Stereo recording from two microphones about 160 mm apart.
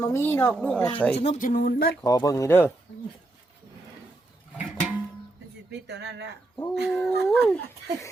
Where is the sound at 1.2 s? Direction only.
50° left (ahead or behind); by 1.9 s 65° left (ahead or behind).